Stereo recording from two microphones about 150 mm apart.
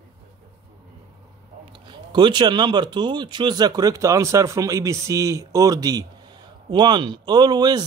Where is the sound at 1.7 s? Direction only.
30° right (ahead or behind).